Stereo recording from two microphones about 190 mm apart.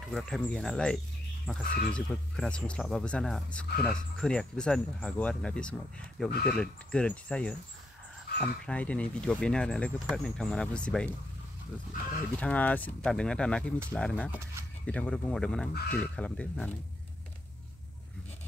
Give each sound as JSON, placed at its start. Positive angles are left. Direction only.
{"t": 0.0, "sound": "speech", "side_deg": 0}
{"t": 12.4, "sound": "speech", "side_deg": 5}